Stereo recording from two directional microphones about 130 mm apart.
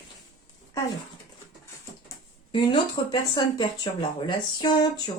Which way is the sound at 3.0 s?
35° left (ahead or behind).